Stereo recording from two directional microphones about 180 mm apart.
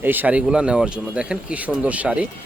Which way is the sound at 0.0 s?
10° right (ahead or behind).